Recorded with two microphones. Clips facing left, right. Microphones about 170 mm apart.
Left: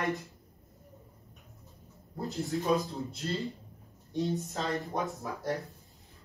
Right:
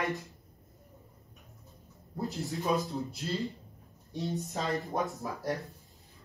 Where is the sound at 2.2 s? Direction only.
Centre (ahead or behind).